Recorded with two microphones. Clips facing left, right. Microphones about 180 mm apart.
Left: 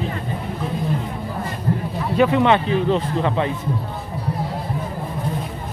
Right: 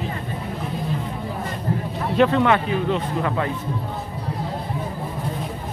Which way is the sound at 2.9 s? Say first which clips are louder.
Left 3 dB; 35° left (ahead or behind).